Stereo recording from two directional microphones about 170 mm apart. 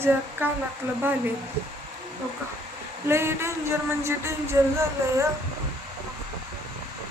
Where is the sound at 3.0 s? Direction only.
15° right (ahead or behind).